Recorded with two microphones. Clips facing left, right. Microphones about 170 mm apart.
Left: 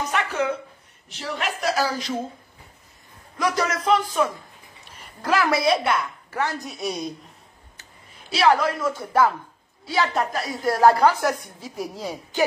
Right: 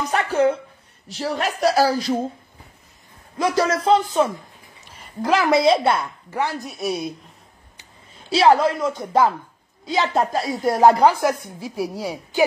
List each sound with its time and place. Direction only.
0.1 s a sound: 35° right (ahead or behind)
1.0 s a woman's voice: 35° right (ahead or behind)
3.3 s speech: 30° right (ahead or behind)
6.6 s a woman's voice: centre (ahead or behind)
8.3 s a woman's voice: 30° right (ahead or behind); by 12.4 s 10° right (ahead or behind)